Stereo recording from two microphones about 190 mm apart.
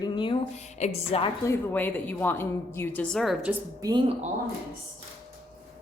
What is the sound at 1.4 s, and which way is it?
A woman's voice, 10° left (ahead or behind).